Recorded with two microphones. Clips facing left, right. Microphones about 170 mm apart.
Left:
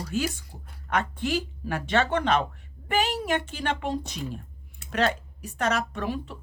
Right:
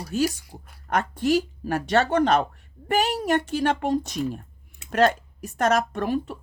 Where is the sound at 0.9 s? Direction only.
40° right (ahead or behind).